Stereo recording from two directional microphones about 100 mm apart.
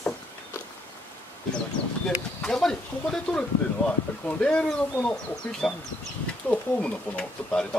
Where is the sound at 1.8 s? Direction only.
75° left (ahead or behind).